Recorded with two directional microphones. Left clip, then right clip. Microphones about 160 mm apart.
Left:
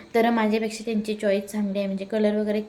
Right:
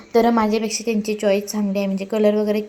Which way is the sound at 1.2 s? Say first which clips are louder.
Right 4 dB; 45° right (ahead or behind).